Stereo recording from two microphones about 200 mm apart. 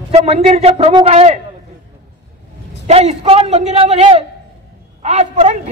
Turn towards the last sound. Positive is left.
turn(degrees=-35)  # may be behind; listen again after turning